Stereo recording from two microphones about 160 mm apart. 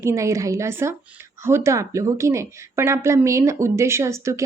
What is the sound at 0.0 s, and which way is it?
A woman's voice, 20° right (ahead or behind).